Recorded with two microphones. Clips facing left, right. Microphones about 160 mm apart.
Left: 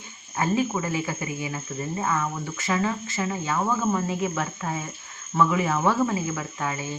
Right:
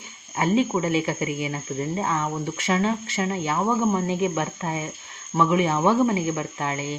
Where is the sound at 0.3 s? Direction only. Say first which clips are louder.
Right 3 dB; 20° right (ahead or behind).